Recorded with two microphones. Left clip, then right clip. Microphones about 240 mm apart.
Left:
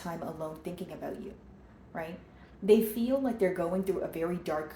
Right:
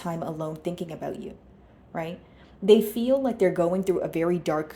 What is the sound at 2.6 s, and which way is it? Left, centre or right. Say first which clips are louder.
Speech: right 6 dB; right.